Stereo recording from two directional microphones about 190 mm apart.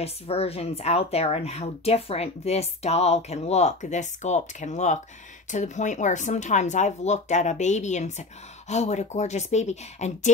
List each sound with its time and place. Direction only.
0.0 s speech: 30° left (ahead or behind)